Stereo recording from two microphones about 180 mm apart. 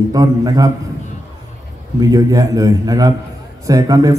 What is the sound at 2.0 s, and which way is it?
A man's voice, 20° right (ahead or behind).